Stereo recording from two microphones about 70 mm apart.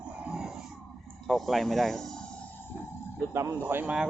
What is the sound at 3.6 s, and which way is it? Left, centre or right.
Speech, right.